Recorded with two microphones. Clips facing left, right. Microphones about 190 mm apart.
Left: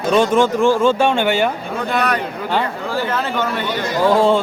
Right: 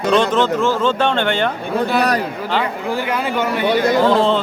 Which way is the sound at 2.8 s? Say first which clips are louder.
Right 1 dB; 15° right (ahead or behind).